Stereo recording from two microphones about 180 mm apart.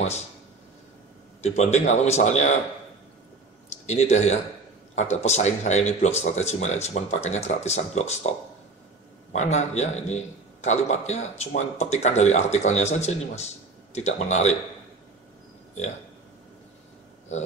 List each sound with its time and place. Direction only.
1.4 s a man's voice: 40° left (ahead or behind)
3.7 s a man's voice: 40° left (ahead or behind)
9.3 s a man's voice: 40° left (ahead or behind)